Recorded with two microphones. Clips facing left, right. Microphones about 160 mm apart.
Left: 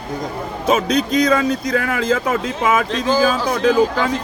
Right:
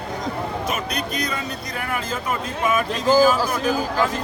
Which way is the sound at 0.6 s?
90° left.